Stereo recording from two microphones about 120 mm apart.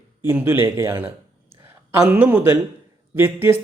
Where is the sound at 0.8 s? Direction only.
15° right (ahead or behind).